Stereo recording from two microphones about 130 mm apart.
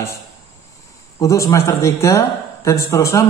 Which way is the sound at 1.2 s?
25° left (ahead or behind).